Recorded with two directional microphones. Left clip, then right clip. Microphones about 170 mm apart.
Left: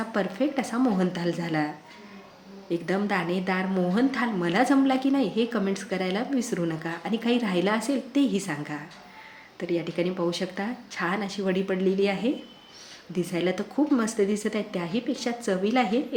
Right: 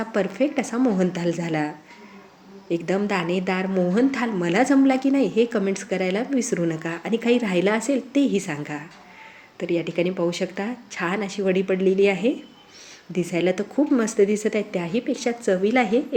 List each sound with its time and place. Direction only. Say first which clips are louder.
0.0 s a woman's voice: right 4 dB; 15° right (ahead or behind)